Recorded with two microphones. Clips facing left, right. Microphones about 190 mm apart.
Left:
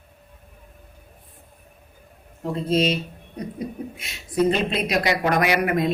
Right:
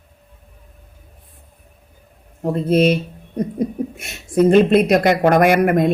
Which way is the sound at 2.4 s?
60° right (ahead or behind).